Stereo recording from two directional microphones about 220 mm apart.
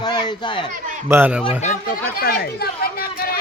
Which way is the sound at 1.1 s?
5° right (ahead or behind).